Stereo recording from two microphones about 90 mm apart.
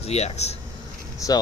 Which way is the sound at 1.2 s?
40° left (ahead or behind).